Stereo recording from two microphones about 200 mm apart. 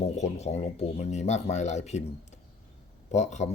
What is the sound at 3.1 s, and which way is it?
Speech, 35° left (ahead or behind).